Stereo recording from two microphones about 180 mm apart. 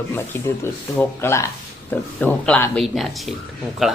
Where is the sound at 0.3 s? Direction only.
15° left (ahead or behind).